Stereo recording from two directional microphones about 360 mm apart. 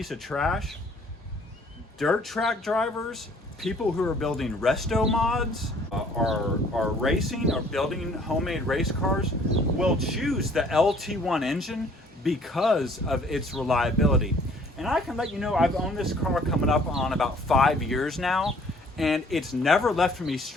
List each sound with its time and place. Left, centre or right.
0.0 s speech: centre
2.0 s speech: centre